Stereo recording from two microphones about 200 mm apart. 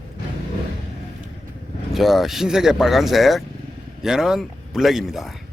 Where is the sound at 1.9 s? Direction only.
Centre (ahead or behind).